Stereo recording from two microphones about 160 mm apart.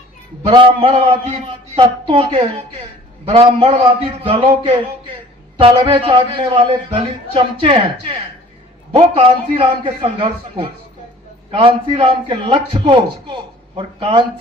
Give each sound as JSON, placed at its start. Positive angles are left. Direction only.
{"t": 0.4, "sound": "a man's voice", "side_deg": -30}